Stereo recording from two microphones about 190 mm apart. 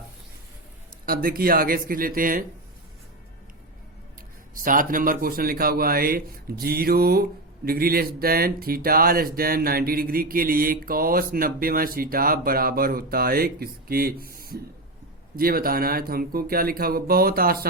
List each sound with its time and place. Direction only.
1.0 s speech: 50° right (ahead or behind)
4.5 s speech: 45° right (ahead or behind)